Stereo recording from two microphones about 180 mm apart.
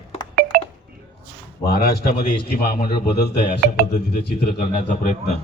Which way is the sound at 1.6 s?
60° left (ahead or behind).